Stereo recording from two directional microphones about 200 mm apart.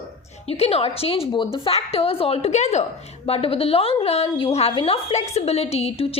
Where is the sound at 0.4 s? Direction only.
30° left (ahead or behind).